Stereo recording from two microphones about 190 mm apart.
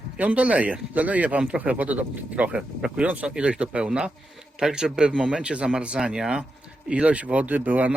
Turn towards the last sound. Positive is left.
turn(degrees=-10)  # may be behind; listen again after turning